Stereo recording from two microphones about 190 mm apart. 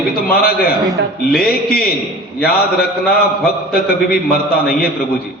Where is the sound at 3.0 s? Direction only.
50° left (ahead or behind).